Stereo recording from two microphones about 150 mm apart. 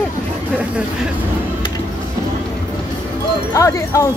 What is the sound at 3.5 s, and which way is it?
Wind chime, 20° left (ahead or behind).